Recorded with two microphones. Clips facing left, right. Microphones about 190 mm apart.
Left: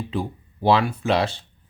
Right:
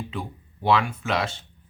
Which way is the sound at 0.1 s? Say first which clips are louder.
Left 6 dB; 35° left (ahead or behind).